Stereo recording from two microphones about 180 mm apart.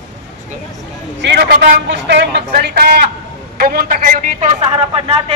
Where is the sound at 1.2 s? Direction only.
70° right (ahead or behind).